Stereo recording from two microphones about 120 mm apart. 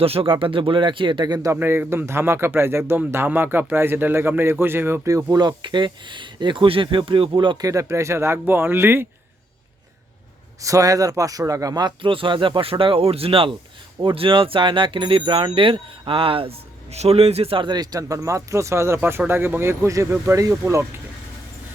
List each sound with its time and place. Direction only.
0.0 s speech: 50° right (ahead or behind); by 1.5 s 30° right (ahead or behind)
1.5 s a man's voice: 20° right (ahead or behind); by 7.7 s 40° right (ahead or behind)
7.7 s a man's voice: 25° right (ahead or behind)
10.6 s a man's voice: 30° right (ahead or behind)